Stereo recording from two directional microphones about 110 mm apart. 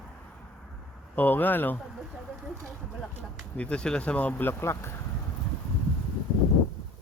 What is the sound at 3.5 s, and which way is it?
Speech, 10° left (ahead or behind).